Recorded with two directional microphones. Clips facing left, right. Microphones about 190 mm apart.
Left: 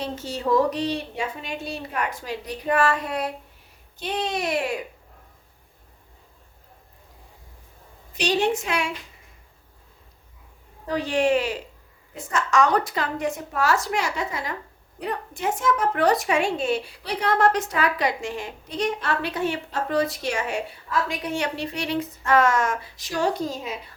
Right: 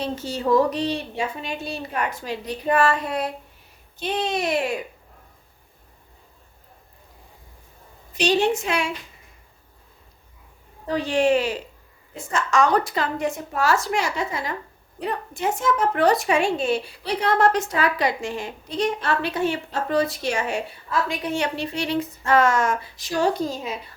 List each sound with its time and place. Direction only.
0.0 s speech: 35° right (ahead or behind)
8.1 s speech: 25° right (ahead or behind)
10.8 s speech: 30° right (ahead or behind)